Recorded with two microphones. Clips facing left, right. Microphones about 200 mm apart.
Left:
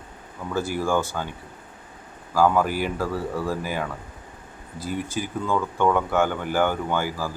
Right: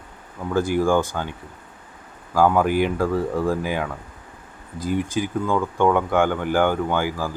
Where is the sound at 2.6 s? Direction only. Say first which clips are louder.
Right 6 dB; 55° right (ahead or behind).